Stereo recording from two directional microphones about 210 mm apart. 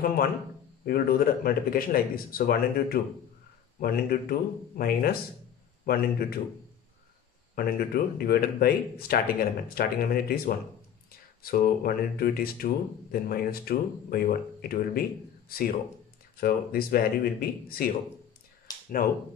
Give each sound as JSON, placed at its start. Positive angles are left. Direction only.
{"t": 0.8, "sound": "speech", "side_deg": 45}
{"t": 7.5, "sound": "speech", "side_deg": 45}
{"t": 18.7, "sound": "a sound", "side_deg": 20}